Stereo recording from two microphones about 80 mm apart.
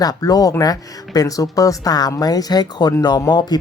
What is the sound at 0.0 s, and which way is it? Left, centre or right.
Speech, left.